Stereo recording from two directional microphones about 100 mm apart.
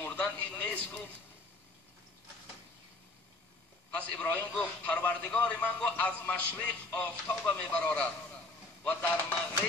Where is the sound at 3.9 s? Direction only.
10° left (ahead or behind).